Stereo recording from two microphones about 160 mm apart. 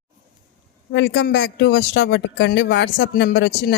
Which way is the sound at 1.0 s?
90° left.